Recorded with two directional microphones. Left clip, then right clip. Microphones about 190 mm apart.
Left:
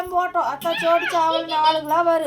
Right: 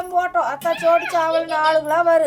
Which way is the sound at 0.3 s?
20° right (ahead or behind).